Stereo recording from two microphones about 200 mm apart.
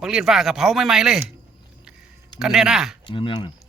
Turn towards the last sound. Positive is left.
turn(degrees=25)  # may be behind; listen again after turning